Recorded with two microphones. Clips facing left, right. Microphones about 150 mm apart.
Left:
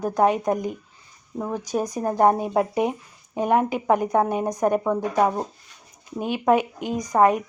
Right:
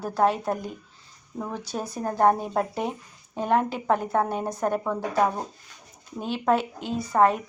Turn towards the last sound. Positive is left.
turn(degrees=15)  # may be behind; listen again after turning